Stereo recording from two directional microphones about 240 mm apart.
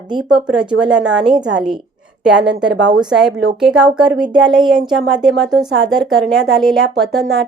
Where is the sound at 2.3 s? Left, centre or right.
Right.